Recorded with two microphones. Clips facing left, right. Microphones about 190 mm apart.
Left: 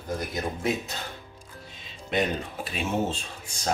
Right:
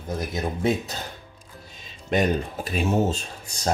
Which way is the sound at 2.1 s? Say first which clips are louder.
Right 4 dB; 45° right (ahead or behind).